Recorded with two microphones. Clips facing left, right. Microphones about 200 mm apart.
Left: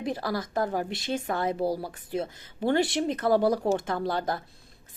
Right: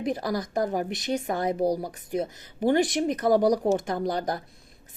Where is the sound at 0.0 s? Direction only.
20° right (ahead or behind).